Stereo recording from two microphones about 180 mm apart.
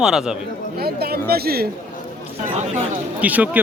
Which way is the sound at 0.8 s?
60° right (ahead or behind).